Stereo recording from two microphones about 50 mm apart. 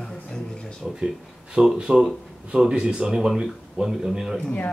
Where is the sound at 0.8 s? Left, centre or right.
Centre.